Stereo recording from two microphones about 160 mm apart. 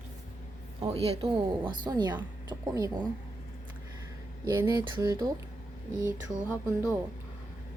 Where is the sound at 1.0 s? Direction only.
35° right (ahead or behind).